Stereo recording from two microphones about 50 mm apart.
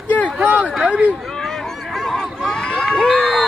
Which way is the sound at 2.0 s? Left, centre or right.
Centre.